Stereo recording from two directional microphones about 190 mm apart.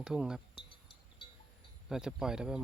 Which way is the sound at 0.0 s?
5° right (ahead or behind).